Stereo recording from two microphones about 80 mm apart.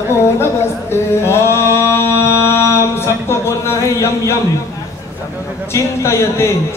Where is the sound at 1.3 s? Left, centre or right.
Left.